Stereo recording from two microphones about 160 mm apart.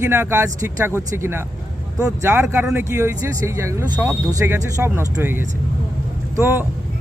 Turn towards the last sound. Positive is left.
turn(degrees=-15)  # may be behind; listen again after turning